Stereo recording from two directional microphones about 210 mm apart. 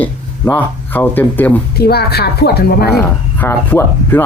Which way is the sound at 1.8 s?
50° left (ahead or behind).